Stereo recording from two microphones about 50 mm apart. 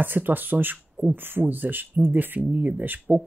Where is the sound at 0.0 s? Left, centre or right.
Right.